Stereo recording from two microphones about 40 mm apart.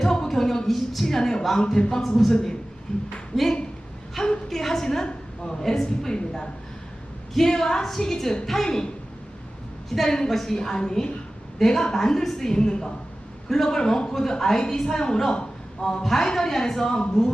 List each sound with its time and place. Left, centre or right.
0.0 s a sound: centre
1.0 s a woman's voice: centre
3.3 s speech: centre
4.2 s a woman's voice: centre
10.1 s a woman's voice: centre
15.3 s a sound: left
16.0 s a woman's voice: centre